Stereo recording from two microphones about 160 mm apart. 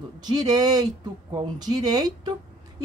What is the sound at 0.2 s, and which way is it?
Speech, 25° right (ahead or behind).